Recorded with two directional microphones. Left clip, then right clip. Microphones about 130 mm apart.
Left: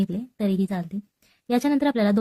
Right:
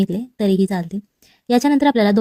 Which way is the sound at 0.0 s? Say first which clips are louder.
Right 7 dB; 40° right (ahead or behind).